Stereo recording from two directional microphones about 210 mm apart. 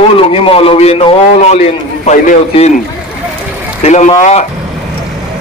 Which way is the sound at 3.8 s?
35° left (ahead or behind).